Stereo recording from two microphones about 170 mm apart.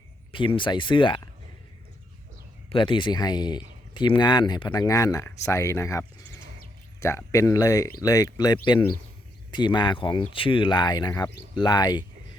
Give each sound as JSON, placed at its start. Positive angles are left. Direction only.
{"t": 0.3, "sound": "speech", "side_deg": 30}
{"t": 2.6, "sound": "speech", "side_deg": 30}